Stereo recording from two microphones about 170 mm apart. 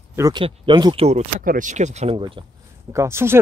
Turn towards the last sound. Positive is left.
turn(degrees=-15)  # may be behind; listen again after turning